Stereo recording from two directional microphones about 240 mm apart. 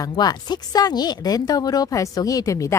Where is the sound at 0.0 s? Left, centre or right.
Centre.